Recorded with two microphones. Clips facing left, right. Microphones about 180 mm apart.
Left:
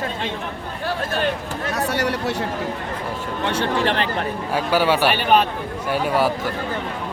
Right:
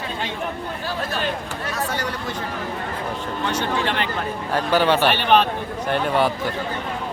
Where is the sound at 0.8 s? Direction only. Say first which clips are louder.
Left 4 dB; 55° left (ahead or behind).